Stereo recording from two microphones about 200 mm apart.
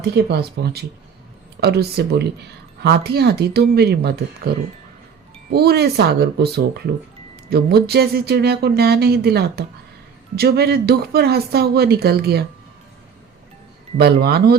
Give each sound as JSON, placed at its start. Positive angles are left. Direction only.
{"t": 0.0, "sound": "speech", "side_deg": -55}
{"t": 14.0, "sound": "speech", "side_deg": -50}